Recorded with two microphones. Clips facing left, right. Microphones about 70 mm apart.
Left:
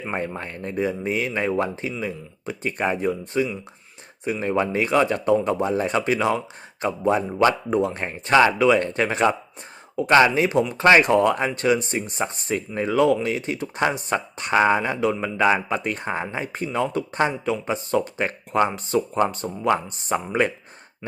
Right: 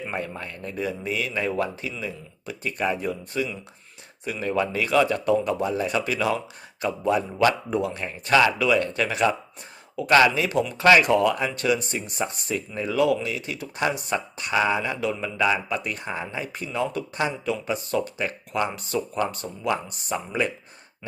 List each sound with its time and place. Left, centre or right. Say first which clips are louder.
0.0 s speech: left 3 dB; left